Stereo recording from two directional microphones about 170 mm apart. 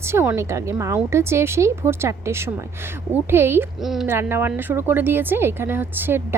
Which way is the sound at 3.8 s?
Centre (ahead or behind).